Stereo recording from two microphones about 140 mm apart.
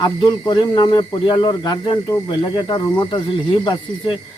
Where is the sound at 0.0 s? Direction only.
30° left (ahead or behind).